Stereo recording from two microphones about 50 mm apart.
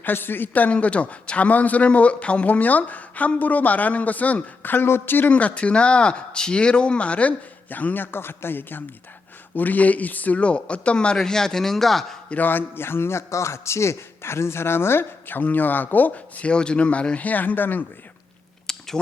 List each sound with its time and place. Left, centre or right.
0.0 s a man's voice: left
5.3 s speech: left
9.6 s speech: left; by 12.1 s centre
12.3 s a man's voice: left
18.6 s a sound: centre